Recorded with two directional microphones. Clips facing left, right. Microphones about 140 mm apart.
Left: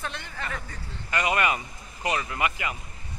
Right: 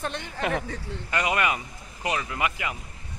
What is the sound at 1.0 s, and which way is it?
Speech, 20° right (ahead or behind).